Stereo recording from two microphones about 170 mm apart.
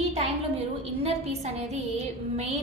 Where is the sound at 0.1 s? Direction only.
40° right (ahead or behind).